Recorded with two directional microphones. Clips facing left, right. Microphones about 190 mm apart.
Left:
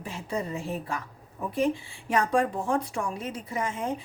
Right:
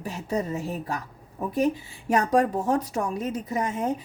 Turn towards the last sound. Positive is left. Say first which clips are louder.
# right 4 dB
turn(degrees=-40)  # may be behind; listen again after turning